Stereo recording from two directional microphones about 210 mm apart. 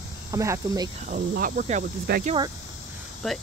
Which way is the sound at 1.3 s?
45° right (ahead or behind).